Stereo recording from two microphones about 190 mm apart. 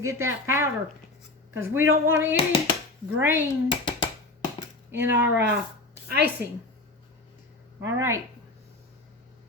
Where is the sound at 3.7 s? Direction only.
25° left (ahead or behind).